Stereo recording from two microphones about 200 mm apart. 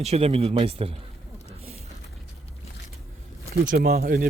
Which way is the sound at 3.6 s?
50° right (ahead or behind).